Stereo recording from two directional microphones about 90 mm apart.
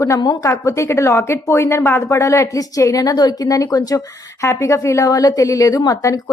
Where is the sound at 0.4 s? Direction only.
35° left (ahead or behind).